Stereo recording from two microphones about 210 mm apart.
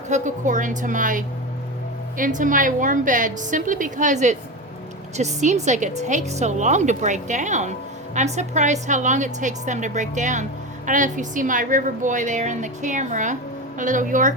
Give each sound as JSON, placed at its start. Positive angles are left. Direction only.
{"t": 0.1, "sound": "a woman's voice", "side_deg": -35}